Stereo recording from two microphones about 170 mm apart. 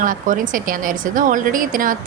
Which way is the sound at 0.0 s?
50° right (ahead or behind).